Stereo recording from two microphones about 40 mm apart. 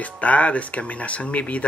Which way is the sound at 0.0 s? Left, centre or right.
Left.